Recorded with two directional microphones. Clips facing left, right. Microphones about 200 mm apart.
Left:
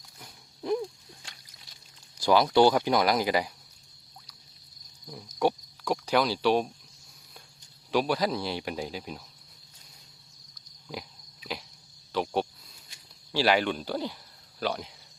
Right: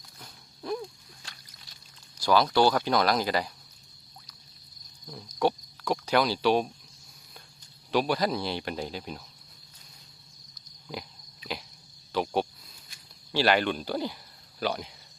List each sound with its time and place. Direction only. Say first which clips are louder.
0.2 s a sound: left 3 dB; 15° left (ahead or behind)
2.2 s speech: left 2 dB; 20° left (ahead or behind)
5.0 s cricket: even; 10° left (ahead or behind)
5.8 s speech: even; centre (ahead or behind)
7.9 s speech: even; centre (ahead or behind)
10.8 s pig: right 1 dB; centre (ahead or behind)
12.1 s cricket: right 1 dB; centre (ahead or behind)
13.3 s speech: even; centre (ahead or behind)